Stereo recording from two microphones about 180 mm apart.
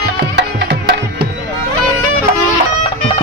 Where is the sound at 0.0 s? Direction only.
65° right (ahead or behind).